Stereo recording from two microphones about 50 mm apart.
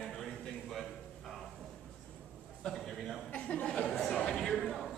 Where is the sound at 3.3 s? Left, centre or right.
Left.